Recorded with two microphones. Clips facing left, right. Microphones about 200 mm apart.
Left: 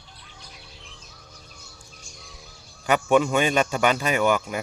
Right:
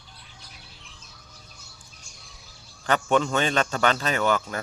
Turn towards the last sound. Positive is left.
turn(degrees=10)  # may be behind; listen again after turning